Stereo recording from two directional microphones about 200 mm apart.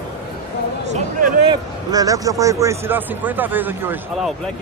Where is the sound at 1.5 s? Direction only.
20° right (ahead or behind).